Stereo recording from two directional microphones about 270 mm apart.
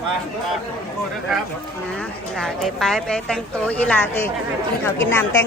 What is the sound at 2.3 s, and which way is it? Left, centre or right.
A woman's voice, centre.